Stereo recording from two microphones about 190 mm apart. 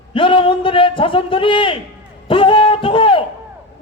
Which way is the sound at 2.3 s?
25° left (ahead or behind).